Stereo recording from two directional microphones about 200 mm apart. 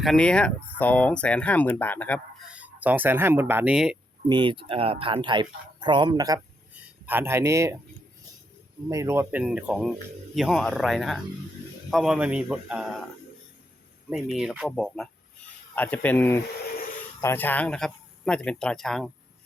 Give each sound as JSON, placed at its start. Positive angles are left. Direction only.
{"t": 0.0, "sound": "speech", "side_deg": 5}
{"t": 2.4, "sound": "speech", "side_deg": -5}
{"t": 4.3, "sound": "speech", "side_deg": -25}
{"t": 8.9, "sound": "speech", "side_deg": -15}
{"t": 14.1, "sound": "speech", "side_deg": 0}